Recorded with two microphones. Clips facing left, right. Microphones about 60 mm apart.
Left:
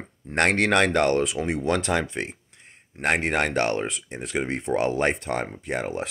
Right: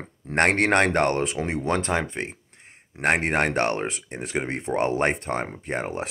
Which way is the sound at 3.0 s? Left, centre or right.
Right.